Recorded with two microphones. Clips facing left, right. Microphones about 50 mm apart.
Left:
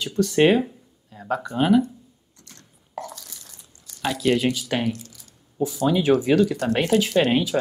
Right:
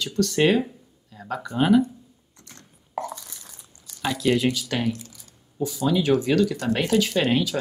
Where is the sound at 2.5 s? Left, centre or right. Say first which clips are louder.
Right 2 dB; right.